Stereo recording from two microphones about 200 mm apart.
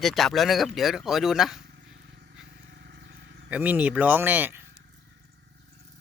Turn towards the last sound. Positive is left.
turn(degrees=-10)  # may be behind; listen again after turning